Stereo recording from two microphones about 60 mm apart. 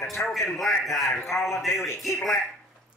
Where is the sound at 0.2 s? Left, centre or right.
Left.